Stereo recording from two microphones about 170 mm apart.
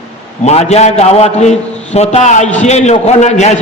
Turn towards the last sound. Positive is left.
turn(degrees=45)  # may be behind; listen again after turning